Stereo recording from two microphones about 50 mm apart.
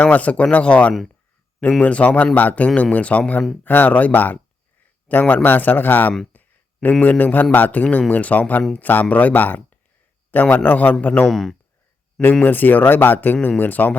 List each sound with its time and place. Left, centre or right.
0.0 s speech: left
6.3 s a sound: left
7.0 s speech: left
11.3 s speech: centre
12.2 s speech: left